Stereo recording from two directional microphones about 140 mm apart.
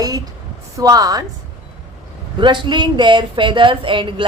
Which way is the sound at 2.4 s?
35° right (ahead or behind).